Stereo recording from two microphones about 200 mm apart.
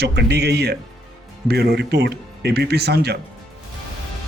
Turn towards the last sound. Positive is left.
turn(degrees=-55)  # may be behind; listen again after turning